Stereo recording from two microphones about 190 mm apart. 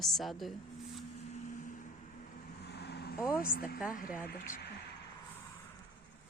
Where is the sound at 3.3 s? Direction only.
50° left (ahead or behind).